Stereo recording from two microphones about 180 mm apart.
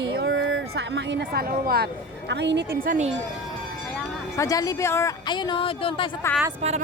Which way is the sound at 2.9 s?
40° right (ahead or behind).